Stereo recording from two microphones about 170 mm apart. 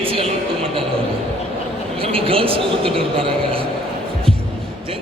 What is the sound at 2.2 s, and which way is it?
Speech, 35° right (ahead or behind).